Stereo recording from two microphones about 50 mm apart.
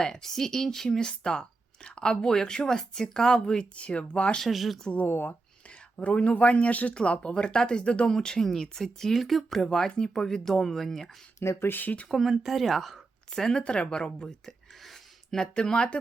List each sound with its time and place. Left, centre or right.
0.0 s speech: centre; by 4.4 s left
4.4 s speech: centre
5.0 s speech: left
5.6 s speech: left; by 9.6 s centre
9.6 s speech: centre
11.3 s speech: left
11.7 s speech: left
12.0 s speech: centre
13.6 s a sound: left
15.4 s speech: centre